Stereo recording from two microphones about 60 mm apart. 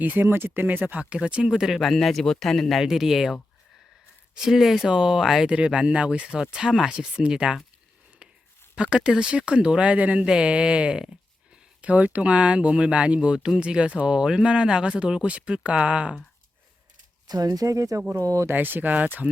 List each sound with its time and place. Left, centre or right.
0.0 s speech: right
0.3 s speech: right
1.1 s speech: centre
2.8 s speech: centre
4.4 s speech: centre
8.7 s a sound: centre
9.0 s speech: centre
17.2 s speech: right
18.5 s speech: right